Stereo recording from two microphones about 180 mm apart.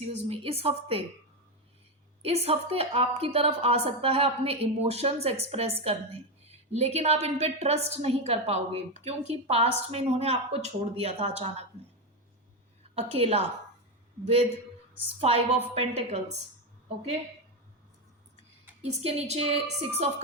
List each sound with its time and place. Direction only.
0.1 s a woman's voice: 35° right (ahead or behind)
2.2 s a woman's voice: 35° right (ahead or behind)
13.0 s a woman's voice: 35° right (ahead or behind)
15.2 s a woman's voice: 35° right (ahead or behind)
19.0 s a woman's voice: 35° right (ahead or behind)